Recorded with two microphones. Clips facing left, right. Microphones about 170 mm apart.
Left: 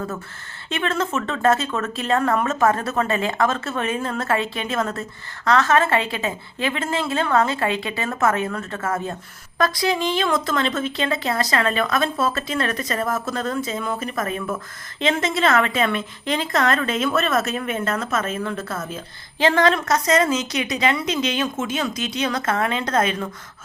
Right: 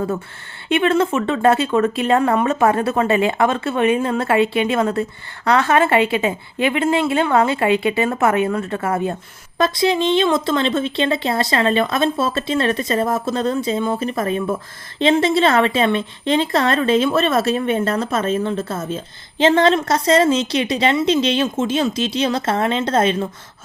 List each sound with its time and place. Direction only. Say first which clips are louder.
1.4 s a woman's voice: right 5 dB; 30° right (ahead or behind)